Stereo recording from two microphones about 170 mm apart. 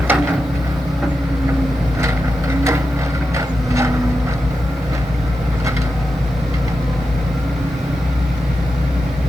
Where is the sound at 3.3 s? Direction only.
15° right (ahead or behind).